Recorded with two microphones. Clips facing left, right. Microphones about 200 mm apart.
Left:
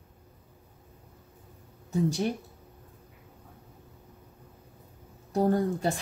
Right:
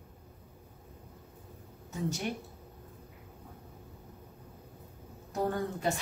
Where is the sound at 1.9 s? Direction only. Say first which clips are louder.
Left 8 dB; 35° left (ahead or behind).